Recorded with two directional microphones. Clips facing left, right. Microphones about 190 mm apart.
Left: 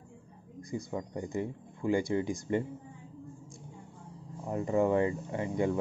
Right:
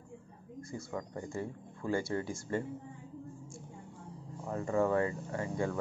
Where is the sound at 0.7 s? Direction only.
20° left (ahead or behind).